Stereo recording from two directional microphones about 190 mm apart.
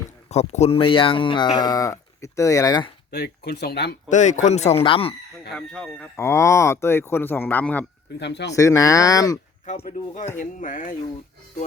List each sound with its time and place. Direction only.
0.3 s speech: 35° left (ahead or behind)
3.1 s speech: 60° left (ahead or behind)
4.1 s speech: 40° left (ahead or behind)
5.5 s speech: 5° left (ahead or behind)
6.1 s speech: 15° left (ahead or behind)
8.2 s speech: 65° left (ahead or behind)
8.5 s speech: 15° left (ahead or behind)
10.3 s speech: 45° left (ahead or behind)